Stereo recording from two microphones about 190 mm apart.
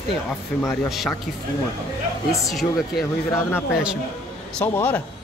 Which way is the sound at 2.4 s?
Centre (ahead or behind).